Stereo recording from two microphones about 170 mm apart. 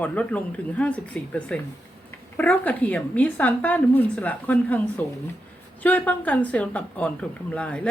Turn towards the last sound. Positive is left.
turn(degrees=5)  # may be behind; listen again after turning